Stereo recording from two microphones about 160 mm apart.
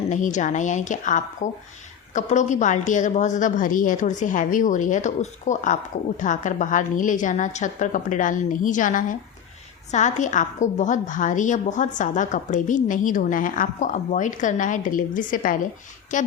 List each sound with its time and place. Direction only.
0.1 s a woman's voice: 50° left (ahead or behind)